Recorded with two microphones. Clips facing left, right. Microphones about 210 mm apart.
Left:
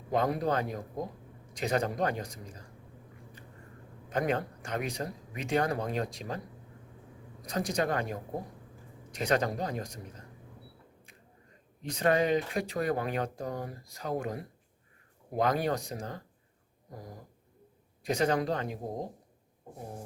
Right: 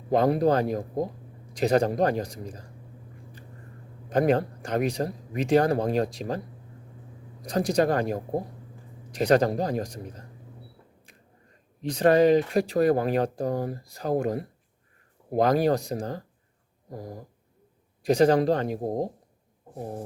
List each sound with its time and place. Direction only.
0.1 s speech: 35° right (ahead or behind)
4.1 s speech: 35° right (ahead or behind)
7.4 s speech: 35° right (ahead or behind)
11.8 s speech: 35° right (ahead or behind)